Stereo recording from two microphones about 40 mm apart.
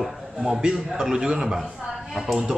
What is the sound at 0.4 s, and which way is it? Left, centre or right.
A man's voice, centre.